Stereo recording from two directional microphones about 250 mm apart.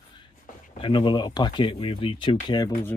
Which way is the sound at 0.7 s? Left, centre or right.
Centre.